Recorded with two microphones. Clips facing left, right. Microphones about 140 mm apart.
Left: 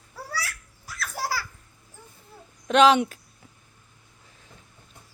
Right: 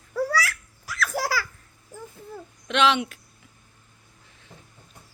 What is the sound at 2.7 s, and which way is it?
Speech, 40° left (ahead or behind).